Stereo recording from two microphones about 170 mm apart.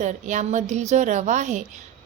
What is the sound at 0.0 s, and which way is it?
A woman's voice, 45° right (ahead or behind).